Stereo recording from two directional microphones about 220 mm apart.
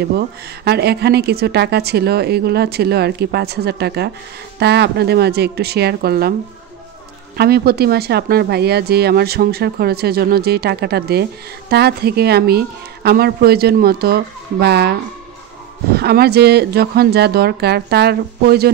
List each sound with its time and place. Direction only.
0.7 s speech: 45° right (ahead or behind)
7.3 s speech: 45° right (ahead or behind)